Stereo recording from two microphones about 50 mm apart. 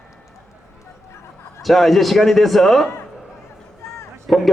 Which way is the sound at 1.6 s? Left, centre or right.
Centre.